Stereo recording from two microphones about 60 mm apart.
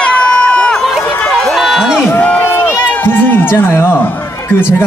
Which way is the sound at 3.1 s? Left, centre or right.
Left.